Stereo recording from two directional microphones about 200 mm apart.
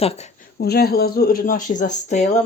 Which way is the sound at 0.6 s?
50° left (ahead or behind).